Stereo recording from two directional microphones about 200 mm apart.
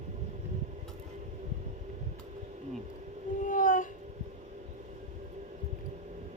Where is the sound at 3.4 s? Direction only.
40° left (ahead or behind).